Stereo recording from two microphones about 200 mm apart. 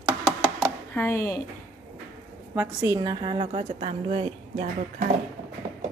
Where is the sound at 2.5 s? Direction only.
10° right (ahead or behind); by 5.0 s 30° right (ahead or behind).